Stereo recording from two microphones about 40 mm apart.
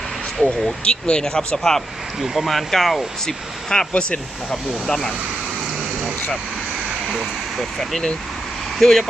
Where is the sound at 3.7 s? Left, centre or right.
Left.